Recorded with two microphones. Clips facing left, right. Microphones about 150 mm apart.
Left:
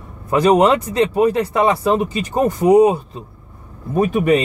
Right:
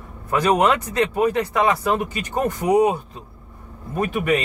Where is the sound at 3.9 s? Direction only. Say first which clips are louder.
Left 6 dB; 40° left (ahead or behind).